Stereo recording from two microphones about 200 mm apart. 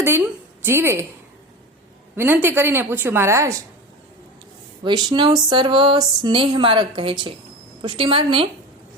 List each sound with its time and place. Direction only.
0.6 s a woman's voice: 10° right (ahead or behind)
2.1 s a woman's voice: 10° right (ahead or behind)
4.8 s a sound: 20° right (ahead or behind)